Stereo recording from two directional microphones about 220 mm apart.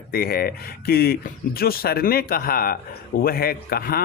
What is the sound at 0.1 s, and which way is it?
Speech, 45° left (ahead or behind).